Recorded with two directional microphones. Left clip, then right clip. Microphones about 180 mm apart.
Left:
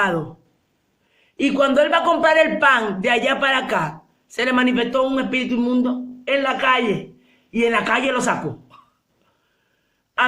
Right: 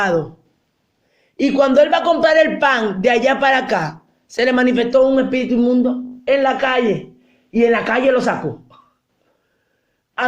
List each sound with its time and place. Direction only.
0.0 s a man's voice: 35° right (ahead or behind)
1.4 s a man's voice: 40° right (ahead or behind)